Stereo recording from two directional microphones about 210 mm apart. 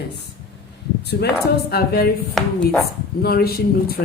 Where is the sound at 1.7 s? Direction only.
50° left (ahead or behind).